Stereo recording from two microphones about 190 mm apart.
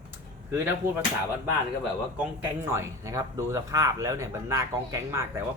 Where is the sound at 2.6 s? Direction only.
15° right (ahead or behind).